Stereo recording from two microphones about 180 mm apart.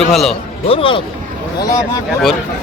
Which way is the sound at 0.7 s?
30° left (ahead or behind).